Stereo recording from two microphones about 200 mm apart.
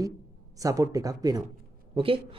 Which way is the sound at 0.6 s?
15° right (ahead or behind).